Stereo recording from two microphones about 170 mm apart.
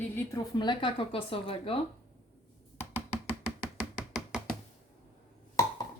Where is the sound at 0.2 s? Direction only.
20° left (ahead or behind).